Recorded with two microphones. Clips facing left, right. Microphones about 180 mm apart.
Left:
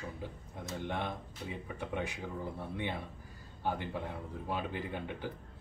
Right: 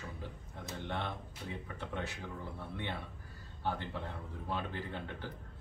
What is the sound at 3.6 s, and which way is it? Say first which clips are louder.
A man's voice: left 2 dB; 15° left (ahead or behind).